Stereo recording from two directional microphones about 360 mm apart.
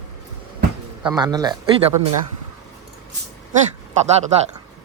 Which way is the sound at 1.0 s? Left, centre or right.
Centre.